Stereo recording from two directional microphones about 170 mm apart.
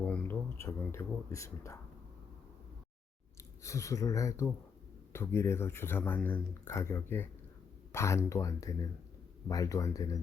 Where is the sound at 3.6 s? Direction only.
20° left (ahead or behind).